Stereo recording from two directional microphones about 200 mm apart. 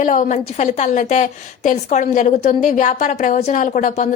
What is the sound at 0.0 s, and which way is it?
Speech, 40° left (ahead or behind).